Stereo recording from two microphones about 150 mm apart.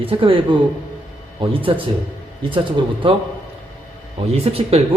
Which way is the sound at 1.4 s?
35° right (ahead or behind).